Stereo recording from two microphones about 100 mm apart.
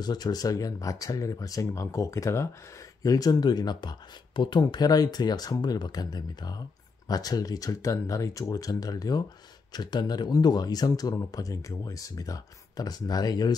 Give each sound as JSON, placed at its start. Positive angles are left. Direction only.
{"t": 0.0, "sound": "speech", "side_deg": 45}